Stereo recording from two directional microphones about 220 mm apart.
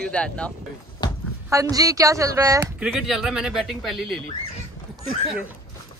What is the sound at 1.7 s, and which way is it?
Speech, 15° right (ahead or behind).